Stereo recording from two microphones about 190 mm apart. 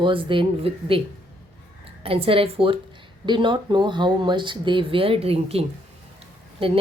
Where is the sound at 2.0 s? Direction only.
30° right (ahead or behind).